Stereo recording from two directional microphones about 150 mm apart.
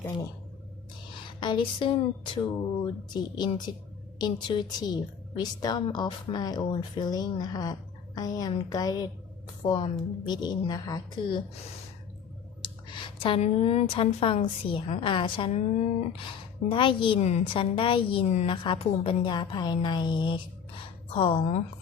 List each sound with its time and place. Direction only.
1.4 s a woman's voice: 30° left (ahead or behind)
12.6 s a woman's voice: 35° left (ahead or behind)
15.5 s speech: 45° left (ahead or behind)
16.6 s a woman's voice: 35° left (ahead or behind)
17.2 s a woman's voice: 45° left (ahead or behind)